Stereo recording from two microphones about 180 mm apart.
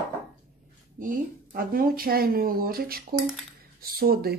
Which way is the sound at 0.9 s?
50° right (ahead or behind).